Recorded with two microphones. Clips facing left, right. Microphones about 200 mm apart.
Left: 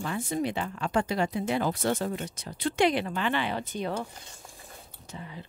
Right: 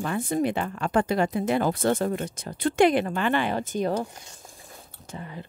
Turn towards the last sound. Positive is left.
turn(degrees=-55)  # may be behind; listen again after turning